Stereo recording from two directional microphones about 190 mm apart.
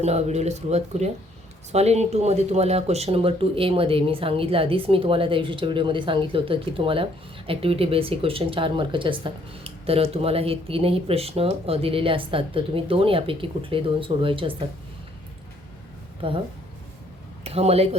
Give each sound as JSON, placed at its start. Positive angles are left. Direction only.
{"t": 0.0, "sound": "speech", "side_deg": -35}
{"t": 16.2, "sound": "speech", "side_deg": -30}
{"t": 17.4, "sound": "speech", "side_deg": -30}